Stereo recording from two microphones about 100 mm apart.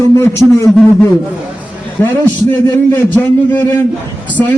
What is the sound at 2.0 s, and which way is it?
A man's voice, 20° left (ahead or behind).